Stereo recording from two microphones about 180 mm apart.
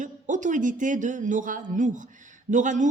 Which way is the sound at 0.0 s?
45° right (ahead or behind).